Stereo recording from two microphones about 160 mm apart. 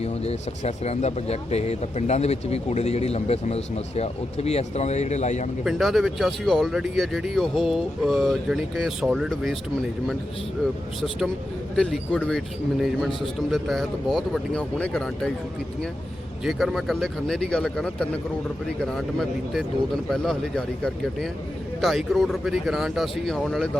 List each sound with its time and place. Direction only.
0.0 s speech: 40° left (ahead or behind)
5.6 s speech: centre (ahead or behind)
11.8 s speech: 5° left (ahead or behind)
13.5 s speech: centre (ahead or behind)
16.4 s speech: centre (ahead or behind)